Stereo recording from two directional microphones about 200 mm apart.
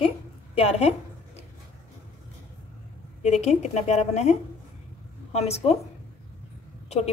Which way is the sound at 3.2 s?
35° left (ahead or behind).